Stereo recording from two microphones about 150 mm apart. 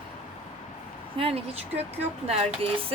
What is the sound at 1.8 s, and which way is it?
Speech, 45° right (ahead or behind).